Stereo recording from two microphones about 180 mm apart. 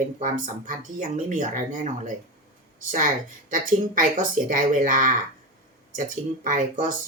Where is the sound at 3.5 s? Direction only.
45° right (ahead or behind).